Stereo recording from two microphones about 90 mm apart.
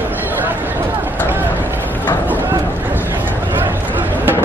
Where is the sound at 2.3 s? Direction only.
20° right (ahead or behind).